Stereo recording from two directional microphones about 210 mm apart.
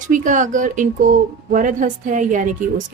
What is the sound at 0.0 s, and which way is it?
Speech, 35° right (ahead or behind).